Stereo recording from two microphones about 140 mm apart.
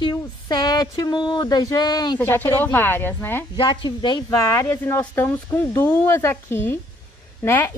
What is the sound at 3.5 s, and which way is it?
Speech, 35° left (ahead or behind).